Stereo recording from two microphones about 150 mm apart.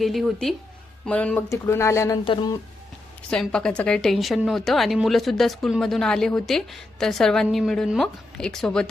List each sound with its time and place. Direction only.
0.0 s a woman's voice: centre (ahead or behind); by 2.1 s 20° left (ahead or behind)
2.2 s speech: 30° left (ahead or behind)
3.2 s a woman's voice: 5° left (ahead or behind)